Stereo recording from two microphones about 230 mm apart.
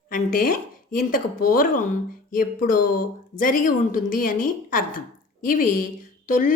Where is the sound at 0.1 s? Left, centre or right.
Left.